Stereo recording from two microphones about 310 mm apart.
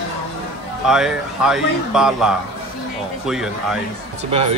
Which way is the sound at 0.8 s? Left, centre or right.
Centre.